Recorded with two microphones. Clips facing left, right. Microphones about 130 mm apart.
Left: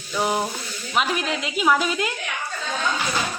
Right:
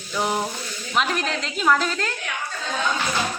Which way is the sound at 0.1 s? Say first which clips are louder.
Left 1 dB; centre (ahead or behind).